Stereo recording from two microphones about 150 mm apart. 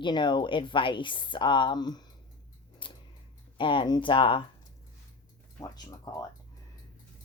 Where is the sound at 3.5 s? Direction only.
35° left (ahead or behind).